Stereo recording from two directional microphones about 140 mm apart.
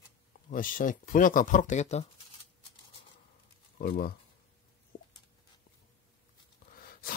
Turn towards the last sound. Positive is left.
turn(degrees=90)